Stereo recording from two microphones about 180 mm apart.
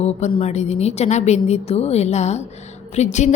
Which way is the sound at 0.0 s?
40° left (ahead or behind).